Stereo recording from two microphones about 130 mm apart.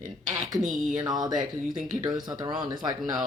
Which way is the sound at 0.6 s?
5° right (ahead or behind).